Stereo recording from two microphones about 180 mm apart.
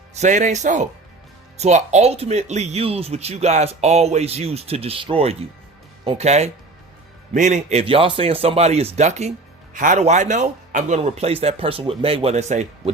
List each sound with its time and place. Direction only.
0.1 s speech: 40° right (ahead or behind)